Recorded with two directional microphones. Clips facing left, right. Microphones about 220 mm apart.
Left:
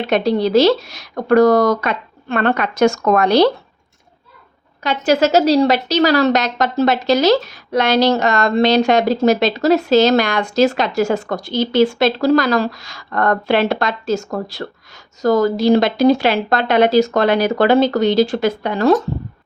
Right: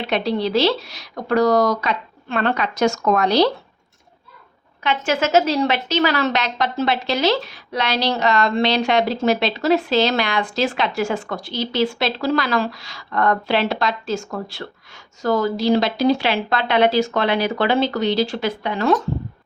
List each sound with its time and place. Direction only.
0.1 s speech: 45° left (ahead or behind)
4.8 s a woman's voice: 40° left (ahead or behind)